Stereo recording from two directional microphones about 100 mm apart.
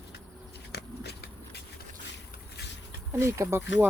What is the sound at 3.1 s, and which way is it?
Speech, 30° right (ahead or behind).